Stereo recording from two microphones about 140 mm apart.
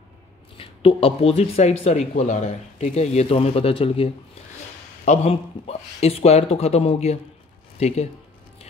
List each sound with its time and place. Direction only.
0.6 s speech: 40° left (ahead or behind)
5.0 s speech: 55° left (ahead or behind)